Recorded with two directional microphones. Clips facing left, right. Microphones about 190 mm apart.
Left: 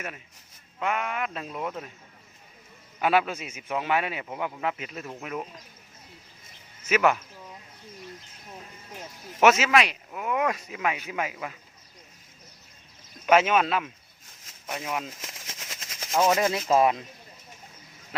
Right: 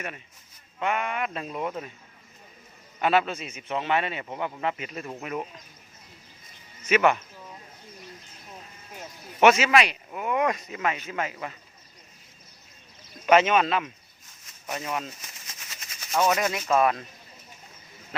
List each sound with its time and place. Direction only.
0.8 s speech: centre (ahead or behind)
3.0 s a man's voice: 10° left (ahead or behind)
6.8 s speech: 5° left (ahead or behind)
9.4 s speech: centre (ahead or behind)
13.2 s a man's voice: 5° left (ahead or behind)
15.2 s a sound: 90° left
16.1 s speech: 25° left (ahead or behind)